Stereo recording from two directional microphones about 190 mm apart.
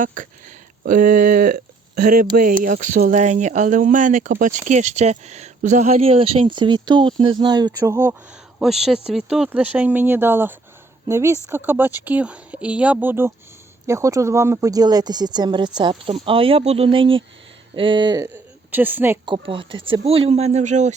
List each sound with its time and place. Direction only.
0.0 s speech: 45° right (ahead or behind); by 18.3 s 20° right (ahead or behind)
18.7 s speech: 10° right (ahead or behind)
19.2 s speech: 25° right (ahead or behind)